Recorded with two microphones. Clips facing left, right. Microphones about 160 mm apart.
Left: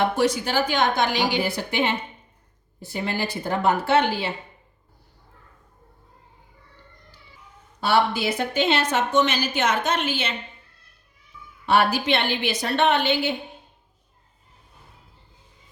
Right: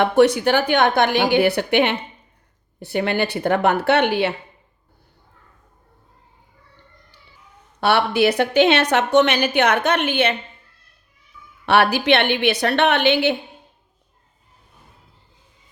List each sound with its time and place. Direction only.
0.0 s a woman's voice: 65° right (ahead or behind)
7.8 s a woman's voice: 65° right (ahead or behind)
11.6 s a woman's voice: 70° right (ahead or behind)